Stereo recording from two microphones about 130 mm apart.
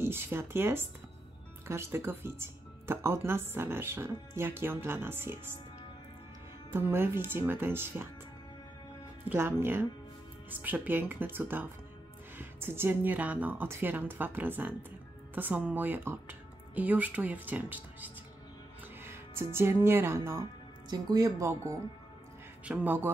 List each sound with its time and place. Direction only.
0.0 s speech: 20° right (ahead or behind)
6.7 s speech: 20° right (ahead or behind)
9.3 s speech: 15° right (ahead or behind)
22.7 s speech: 10° right (ahead or behind)